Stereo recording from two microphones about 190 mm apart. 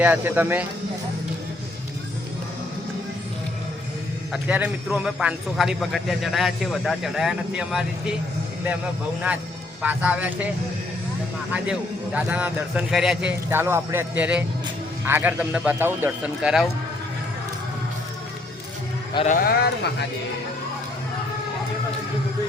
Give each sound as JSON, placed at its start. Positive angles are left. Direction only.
{"t": 0.0, "sound": "a man's voice", "side_deg": -10}
{"t": 4.3, "sound": "a man's voice", "side_deg": -5}
{"t": 9.8, "sound": "a man's voice", "side_deg": -5}
{"t": 11.5, "sound": "a man's voice", "side_deg": -5}
{"t": 19.1, "sound": "speech", "side_deg": 35}
{"t": 19.5, "sound": "speech", "side_deg": 60}